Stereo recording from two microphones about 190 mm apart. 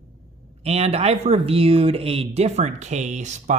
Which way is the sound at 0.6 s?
35° right (ahead or behind).